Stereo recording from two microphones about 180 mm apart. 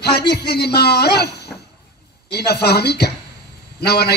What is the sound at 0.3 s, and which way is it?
A man's voice, 65° left (ahead or behind).